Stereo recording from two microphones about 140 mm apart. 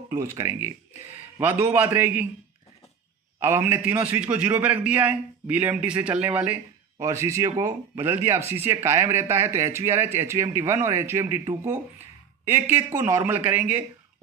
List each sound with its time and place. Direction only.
0.1 s a man's voice: 20° right (ahead or behind)
3.3 s a man's voice: 20° right (ahead or behind)
7.0 s a man's voice: 20° right (ahead or behind)
12.4 s a man's voice: 15° right (ahead or behind)